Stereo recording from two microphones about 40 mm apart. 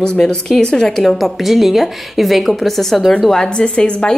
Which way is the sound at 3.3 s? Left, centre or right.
Centre.